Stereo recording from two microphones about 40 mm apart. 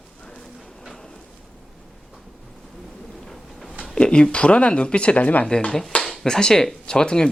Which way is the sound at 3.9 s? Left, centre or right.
Left.